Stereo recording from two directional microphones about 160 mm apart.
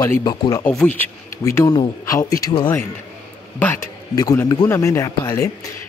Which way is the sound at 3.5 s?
15° left (ahead or behind).